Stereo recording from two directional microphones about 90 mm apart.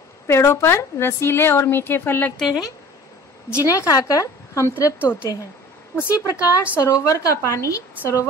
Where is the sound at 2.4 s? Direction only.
Centre (ahead or behind).